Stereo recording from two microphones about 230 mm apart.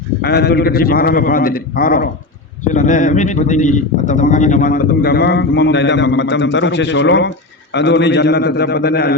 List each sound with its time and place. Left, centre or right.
0.2 s a man's voice: left